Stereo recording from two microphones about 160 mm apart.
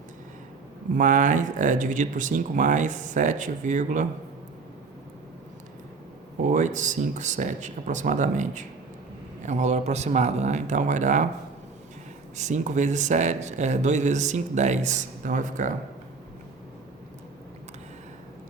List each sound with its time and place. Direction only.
0.9 s speech: 55° right (ahead or behind)
6.4 s speech: 50° right (ahead or behind)
12.4 s speech: 50° right (ahead or behind)